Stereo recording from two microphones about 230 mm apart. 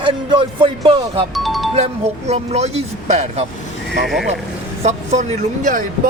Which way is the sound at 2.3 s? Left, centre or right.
Right.